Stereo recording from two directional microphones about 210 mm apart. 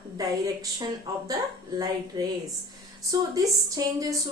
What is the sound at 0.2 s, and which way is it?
A woman's voice, 15° right (ahead or behind).